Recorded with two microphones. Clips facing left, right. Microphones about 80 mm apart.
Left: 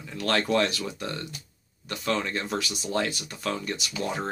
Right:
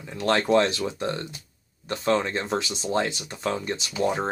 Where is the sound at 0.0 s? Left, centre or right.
Right.